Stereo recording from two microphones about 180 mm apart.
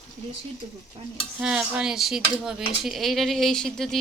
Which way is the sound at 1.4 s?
5° right (ahead or behind).